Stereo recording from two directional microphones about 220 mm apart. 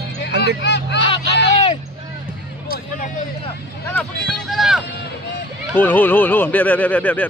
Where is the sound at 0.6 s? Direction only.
50° left (ahead or behind).